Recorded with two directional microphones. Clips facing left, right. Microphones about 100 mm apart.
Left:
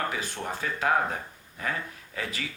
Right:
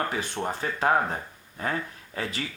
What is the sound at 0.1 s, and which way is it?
Speech, 35° right (ahead or behind).